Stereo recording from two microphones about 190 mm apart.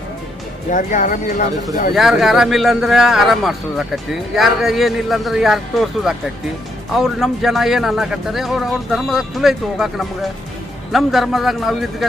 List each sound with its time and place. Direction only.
0.7 s speech: 45° left (ahead or behind)
2.0 s a man's voice: centre (ahead or behind)